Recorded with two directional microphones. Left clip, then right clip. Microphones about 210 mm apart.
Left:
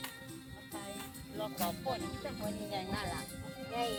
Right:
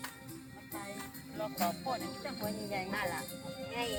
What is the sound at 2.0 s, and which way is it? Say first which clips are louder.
Music: right 1 dB; 55° right (ahead or behind).